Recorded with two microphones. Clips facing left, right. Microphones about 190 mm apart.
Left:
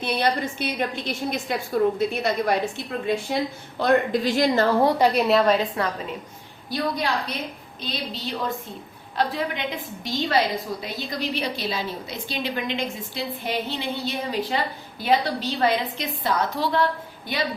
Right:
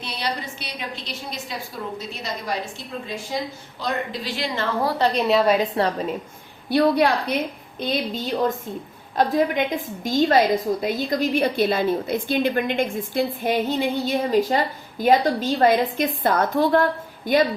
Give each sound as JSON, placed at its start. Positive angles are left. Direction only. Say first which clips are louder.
{"t": 0.0, "sound": "a woman's voice", "louder": "left 6 dB", "side_deg": 55}
{"t": 4.8, "sound": "a woman's voice", "louder": "left 2 dB", "side_deg": 15}
{"t": 5.2, "sound": "a woman's voice", "louder": "right 3 dB", "side_deg": 0}
{"t": 5.8, "sound": "a woman's voice", "louder": "right 4 dB", "side_deg": -30}
{"t": 6.7, "sound": "a woman's voice", "louder": "right 8 dB", "side_deg": -60}